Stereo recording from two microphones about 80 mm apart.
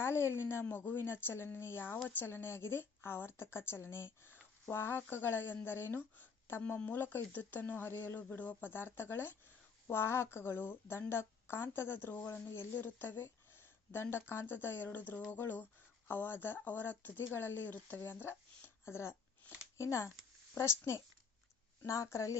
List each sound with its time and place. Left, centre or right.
0.0 s a woman's voice: left